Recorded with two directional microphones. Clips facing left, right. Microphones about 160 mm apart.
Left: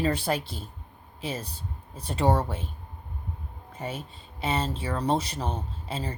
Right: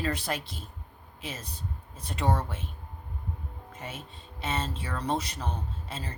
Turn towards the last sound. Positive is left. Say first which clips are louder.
# left 5 dB
turn(degrees=30)  # may be behind; listen again after turning